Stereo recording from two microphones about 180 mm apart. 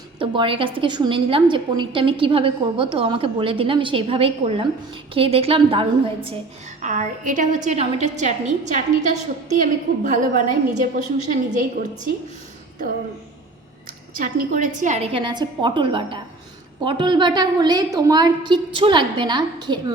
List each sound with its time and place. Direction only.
0.2 s a woman's voice: 30° right (ahead or behind)
6.8 s a woman's voice: 45° right (ahead or behind)
14.2 s a woman's voice: 50° right (ahead or behind); by 19.8 s 25° right (ahead or behind)